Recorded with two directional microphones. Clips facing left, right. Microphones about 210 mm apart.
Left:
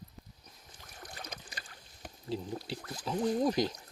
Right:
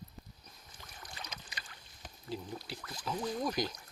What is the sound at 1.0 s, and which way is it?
Boat, 50° left (ahead or behind).